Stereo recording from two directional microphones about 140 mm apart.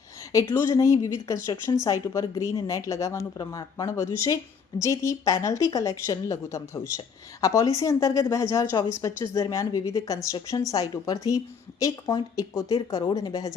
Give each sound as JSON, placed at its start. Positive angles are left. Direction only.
{"t": 0.5, "sound": "a woman's voice", "side_deg": 20}